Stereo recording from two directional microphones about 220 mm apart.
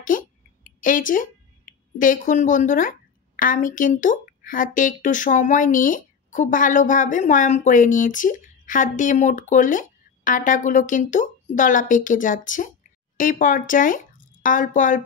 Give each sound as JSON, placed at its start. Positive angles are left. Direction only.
{"t": 0.1, "sound": "a woman's voice", "side_deg": 35}